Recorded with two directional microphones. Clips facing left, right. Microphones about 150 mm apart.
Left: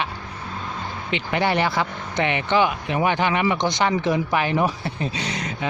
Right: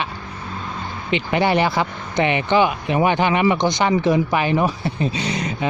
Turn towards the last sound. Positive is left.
turn(degrees=-15)  # may be behind; listen again after turning